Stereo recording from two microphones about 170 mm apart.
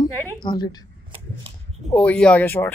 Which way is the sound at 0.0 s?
25° left (ahead or behind).